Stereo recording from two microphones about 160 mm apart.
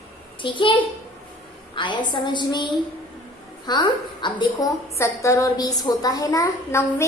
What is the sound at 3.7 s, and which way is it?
A woman's voice, 25° left (ahead or behind).